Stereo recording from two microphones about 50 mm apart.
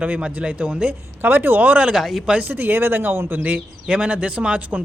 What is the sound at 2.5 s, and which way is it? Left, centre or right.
Speech, right.